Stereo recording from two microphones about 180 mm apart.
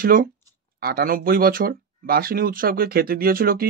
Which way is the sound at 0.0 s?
50° right (ahead or behind).